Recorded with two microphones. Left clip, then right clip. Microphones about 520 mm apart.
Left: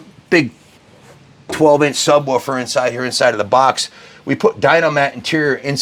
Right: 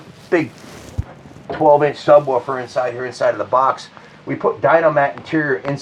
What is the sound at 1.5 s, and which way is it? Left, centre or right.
Speech, left.